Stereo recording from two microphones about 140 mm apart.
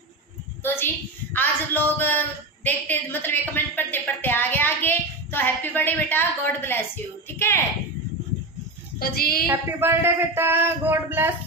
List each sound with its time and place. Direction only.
1.3 s speech: 15° left (ahead or behind)
9.1 s a woman's voice: 90° left
9.5 s a man's voice: 15° right (ahead or behind)